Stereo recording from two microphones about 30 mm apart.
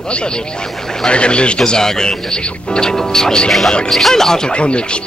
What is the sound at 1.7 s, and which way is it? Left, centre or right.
Speech, left.